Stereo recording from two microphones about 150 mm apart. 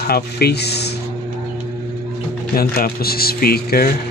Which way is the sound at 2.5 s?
80° left.